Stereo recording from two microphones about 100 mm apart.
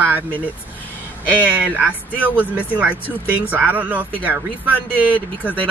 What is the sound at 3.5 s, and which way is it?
Speech, 20° right (ahead or behind).